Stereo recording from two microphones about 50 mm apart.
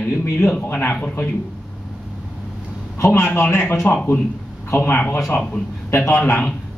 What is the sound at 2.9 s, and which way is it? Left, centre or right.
Speech, left.